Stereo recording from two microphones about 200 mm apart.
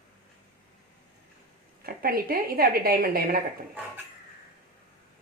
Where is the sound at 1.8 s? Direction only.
50° right (ahead or behind).